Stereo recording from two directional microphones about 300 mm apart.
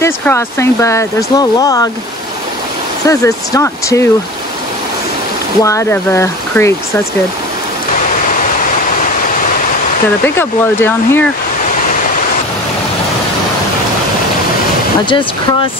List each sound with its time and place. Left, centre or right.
0.0 s speech: centre
3.1 s speech: centre
5.6 s speech: centre
10.2 s speech: centre
15.0 s speech: centre